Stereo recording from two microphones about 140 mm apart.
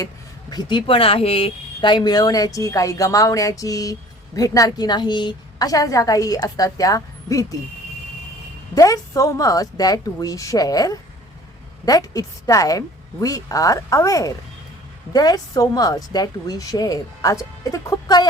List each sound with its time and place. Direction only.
0.5 s speech: 30° left (ahead or behind)
8.7 s speech: 25° left (ahead or behind)